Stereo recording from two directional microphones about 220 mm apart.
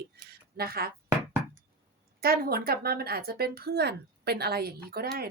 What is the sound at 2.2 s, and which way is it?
Speech, 45° right (ahead or behind).